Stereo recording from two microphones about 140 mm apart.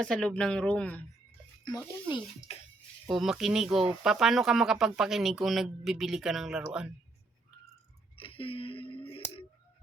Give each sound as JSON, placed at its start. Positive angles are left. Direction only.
{"t": 0.0, "sound": "speech", "side_deg": 5}
{"t": 1.6, "sound": "speech", "side_deg": 35}
{"t": 3.1, "sound": "speech", "side_deg": 0}
{"t": 8.1, "sound": "music", "side_deg": 40}